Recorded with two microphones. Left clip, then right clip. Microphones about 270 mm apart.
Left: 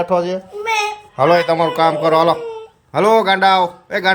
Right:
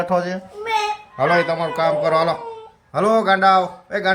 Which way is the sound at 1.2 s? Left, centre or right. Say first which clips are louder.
Left 5 dB; centre.